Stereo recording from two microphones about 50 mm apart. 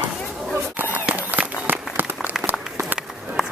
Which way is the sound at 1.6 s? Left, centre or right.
Right.